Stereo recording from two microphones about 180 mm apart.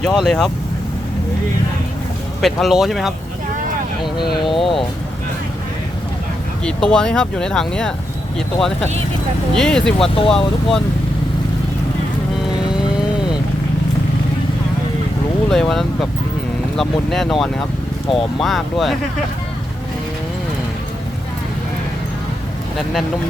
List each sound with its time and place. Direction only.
0.0 s speech: centre (ahead or behind)
2.4 s speech: centre (ahead or behind)
4.4 s speech: 30° left (ahead or behind)
6.7 s speech: 5° left (ahead or behind)
15.4 s speech: centre (ahead or behind)